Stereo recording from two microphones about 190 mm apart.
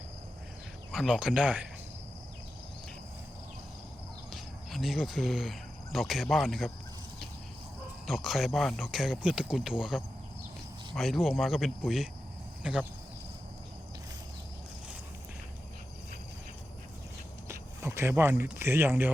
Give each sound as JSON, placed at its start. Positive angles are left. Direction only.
{"t": 0.9, "sound": "speech", "side_deg": -5}
{"t": 4.4, "sound": "speech", "side_deg": 0}
{"t": 8.0, "sound": "speech", "side_deg": 0}
{"t": 17.5, "sound": "a sound", "side_deg": -15}
{"t": 18.6, "sound": "speech", "side_deg": -10}